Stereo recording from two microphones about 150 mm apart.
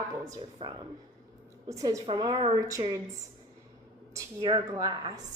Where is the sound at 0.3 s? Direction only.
25° right (ahead or behind).